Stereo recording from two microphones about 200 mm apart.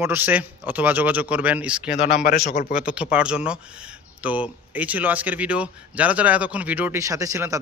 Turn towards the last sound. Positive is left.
turn(degrees=-15)  # may be behind; listen again after turning